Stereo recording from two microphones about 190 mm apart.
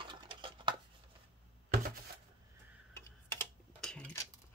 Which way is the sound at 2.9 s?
10° left (ahead or behind).